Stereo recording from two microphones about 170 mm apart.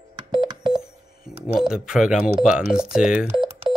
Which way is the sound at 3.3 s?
30° right (ahead or behind).